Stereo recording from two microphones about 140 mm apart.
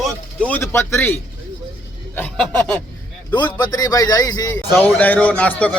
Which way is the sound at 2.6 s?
10° left (ahead or behind).